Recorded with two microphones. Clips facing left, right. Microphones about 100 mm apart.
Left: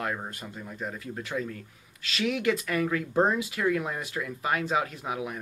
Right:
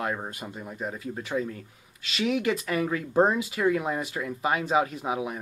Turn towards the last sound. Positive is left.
turn(degrees=-15)  # may be behind; listen again after turning